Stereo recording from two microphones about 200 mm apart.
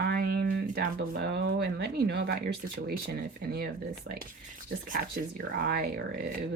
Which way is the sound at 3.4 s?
50° right (ahead or behind).